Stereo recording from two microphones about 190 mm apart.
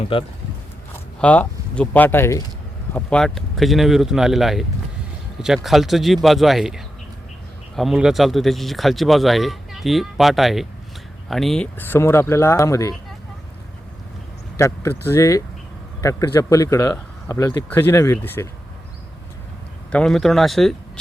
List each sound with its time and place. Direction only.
0.1 s speech: 30° left (ahead or behind)
1.2 s speech: 5° left (ahead or behind)
5.6 s speech: centre (ahead or behind); by 13.0 s 15° left (ahead or behind)
14.6 s speech: 15° left (ahead or behind)
19.9 s speech: 5° left (ahead or behind)